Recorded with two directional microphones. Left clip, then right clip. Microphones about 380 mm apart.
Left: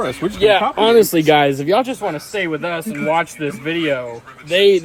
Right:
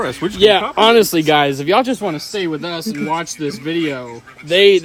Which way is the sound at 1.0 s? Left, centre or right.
Centre.